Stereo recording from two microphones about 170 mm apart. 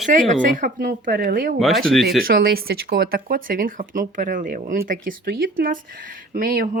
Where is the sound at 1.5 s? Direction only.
Centre (ahead or behind).